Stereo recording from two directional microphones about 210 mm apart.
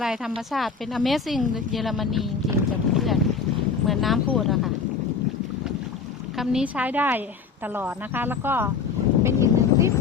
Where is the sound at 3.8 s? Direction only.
Centre (ahead or behind).